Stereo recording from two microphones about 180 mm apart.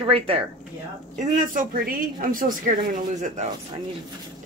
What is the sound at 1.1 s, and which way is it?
Speech, 45° right (ahead or behind).